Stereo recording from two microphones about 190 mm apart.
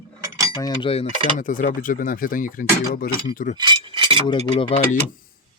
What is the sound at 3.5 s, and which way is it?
Keys jangling, 25° right (ahead or behind).